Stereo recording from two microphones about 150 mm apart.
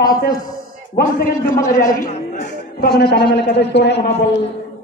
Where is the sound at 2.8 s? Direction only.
90° left.